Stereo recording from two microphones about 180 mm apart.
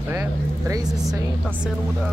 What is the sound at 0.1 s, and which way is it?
Vehicle, 15° right (ahead or behind).